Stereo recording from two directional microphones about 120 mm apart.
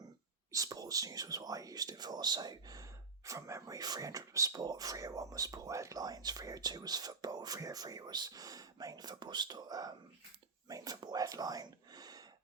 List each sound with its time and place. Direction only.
0.5 s speech: 30° right (ahead or behind)